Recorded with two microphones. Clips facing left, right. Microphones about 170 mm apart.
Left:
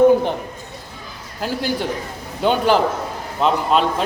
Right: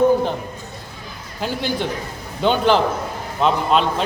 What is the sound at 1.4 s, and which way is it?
A man's voice, 5° left (ahead or behind).